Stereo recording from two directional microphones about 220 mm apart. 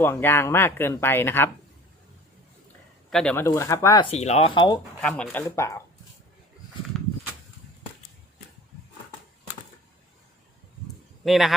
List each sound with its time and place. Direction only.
0.0 s speech: 10° left (ahead or behind)
3.1 s speech: 5° left (ahead or behind)
4.1 s speech: 30° left (ahead or behind)
4.9 s speech: 5° left (ahead or behind)
11.3 s a man's voice: centre (ahead or behind)